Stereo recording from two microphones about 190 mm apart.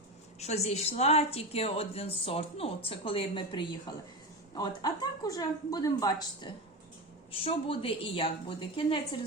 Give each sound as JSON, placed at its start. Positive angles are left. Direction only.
{"t": 0.3, "sound": "a woman's voice", "side_deg": 35}